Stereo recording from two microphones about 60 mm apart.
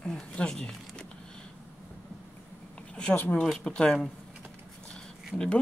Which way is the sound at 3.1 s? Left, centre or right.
Left.